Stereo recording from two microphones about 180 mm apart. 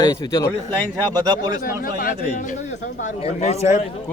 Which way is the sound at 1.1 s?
20° right (ahead or behind).